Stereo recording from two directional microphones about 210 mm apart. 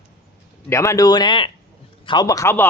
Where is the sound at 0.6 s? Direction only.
15° left (ahead or behind).